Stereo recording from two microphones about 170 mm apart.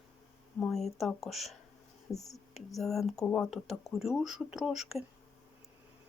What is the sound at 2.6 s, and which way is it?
Speech, centre (ahead or behind).